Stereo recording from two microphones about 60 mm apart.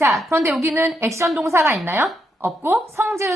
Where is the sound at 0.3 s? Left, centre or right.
Right.